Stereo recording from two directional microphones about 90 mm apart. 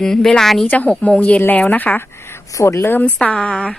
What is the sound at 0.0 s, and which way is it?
Speech, 5° left (ahead or behind).